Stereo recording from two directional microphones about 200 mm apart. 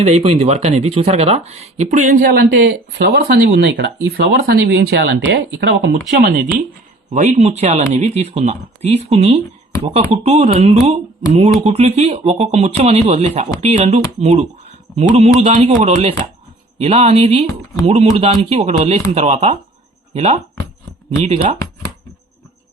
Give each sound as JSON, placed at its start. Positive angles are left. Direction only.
{"t": 0.0, "sound": "speech", "side_deg": -30}
{"t": 6.1, "sound": "speech", "side_deg": -45}
{"t": 7.1, "sound": "speech", "side_deg": -35}